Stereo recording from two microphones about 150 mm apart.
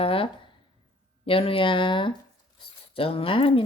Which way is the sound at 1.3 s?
40° left (ahead or behind).